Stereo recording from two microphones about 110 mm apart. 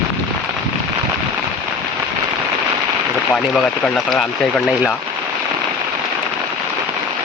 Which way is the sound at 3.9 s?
Centre (ahead or behind).